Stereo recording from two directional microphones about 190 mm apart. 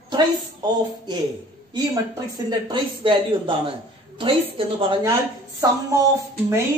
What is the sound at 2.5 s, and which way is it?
Speech, 25° right (ahead or behind).